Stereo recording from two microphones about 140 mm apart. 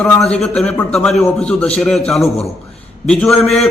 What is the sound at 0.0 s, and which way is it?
A man's voice, 5° left (ahead or behind).